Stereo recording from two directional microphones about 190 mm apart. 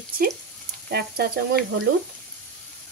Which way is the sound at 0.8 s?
55° right (ahead or behind).